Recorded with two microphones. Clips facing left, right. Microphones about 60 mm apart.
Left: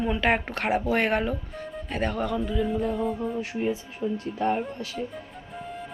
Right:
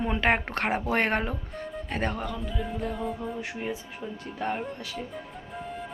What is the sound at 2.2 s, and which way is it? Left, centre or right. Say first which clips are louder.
Speech: left 6 dB; centre.